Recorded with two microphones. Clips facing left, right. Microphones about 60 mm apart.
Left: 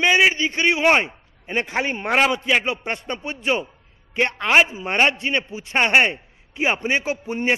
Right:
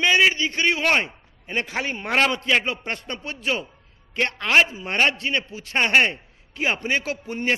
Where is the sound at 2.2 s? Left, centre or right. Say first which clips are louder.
Left 1 dB; centre.